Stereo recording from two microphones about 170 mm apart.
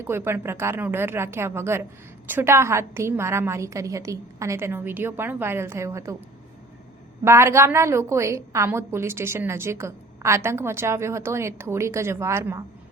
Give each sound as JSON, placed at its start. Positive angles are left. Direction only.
{"t": 0.0, "sound": "a woman's voice", "side_deg": -15}
{"t": 7.3, "sound": "a woman's voice", "side_deg": -15}